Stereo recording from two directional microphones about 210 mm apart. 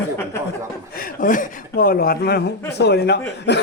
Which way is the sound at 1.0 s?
40° left (ahead or behind).